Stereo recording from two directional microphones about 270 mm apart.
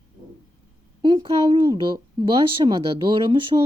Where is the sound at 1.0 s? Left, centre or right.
Centre.